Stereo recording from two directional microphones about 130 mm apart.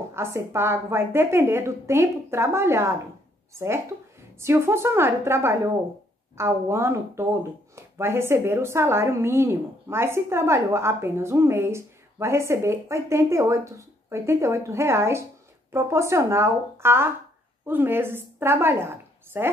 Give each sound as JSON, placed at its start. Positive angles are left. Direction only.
{"t": 0.1, "sound": "a woman's voice", "side_deg": -20}